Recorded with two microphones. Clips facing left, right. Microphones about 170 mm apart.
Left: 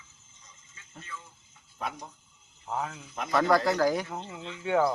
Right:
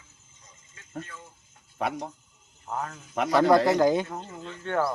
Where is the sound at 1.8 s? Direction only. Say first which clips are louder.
Right 7 dB; 60° right (ahead or behind).